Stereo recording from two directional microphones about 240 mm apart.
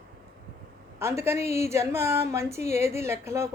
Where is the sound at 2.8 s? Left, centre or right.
Centre.